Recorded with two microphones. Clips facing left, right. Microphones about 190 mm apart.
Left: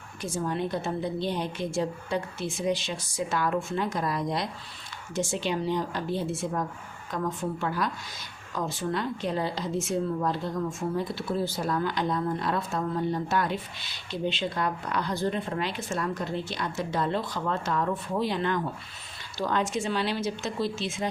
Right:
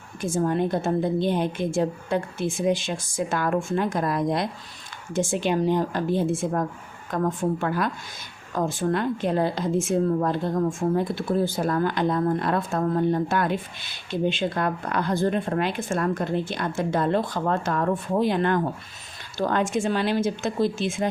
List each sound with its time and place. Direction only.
0.2 s speech: 50° right (ahead or behind)